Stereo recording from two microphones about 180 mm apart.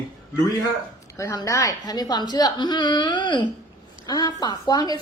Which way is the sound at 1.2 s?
20° left (ahead or behind).